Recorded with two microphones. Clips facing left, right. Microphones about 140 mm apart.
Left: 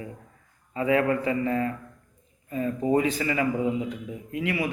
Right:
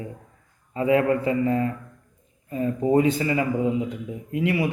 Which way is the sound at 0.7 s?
25° right (ahead or behind).